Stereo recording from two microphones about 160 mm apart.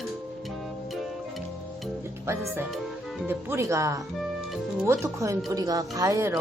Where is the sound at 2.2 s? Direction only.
15° right (ahead or behind).